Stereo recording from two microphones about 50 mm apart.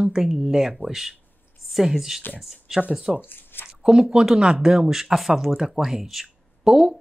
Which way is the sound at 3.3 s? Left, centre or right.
Left.